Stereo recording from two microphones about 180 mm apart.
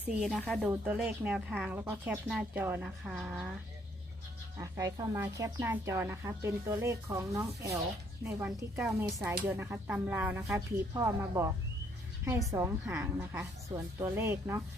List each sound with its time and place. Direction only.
0.0 s a woman's voice: 5° right (ahead or behind)
4.6 s a woman's voice: 20° right (ahead or behind)